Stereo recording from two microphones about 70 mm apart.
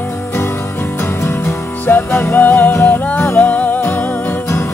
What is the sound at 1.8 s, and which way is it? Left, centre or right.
Music, left.